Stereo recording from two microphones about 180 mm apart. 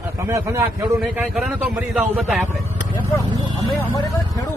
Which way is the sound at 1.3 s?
5° right (ahead or behind).